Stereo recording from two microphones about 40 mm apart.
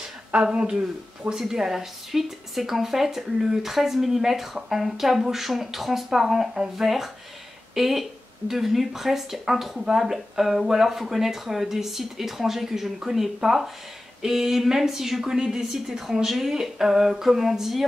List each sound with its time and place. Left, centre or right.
0.3 s speech: right; by 17.8 s centre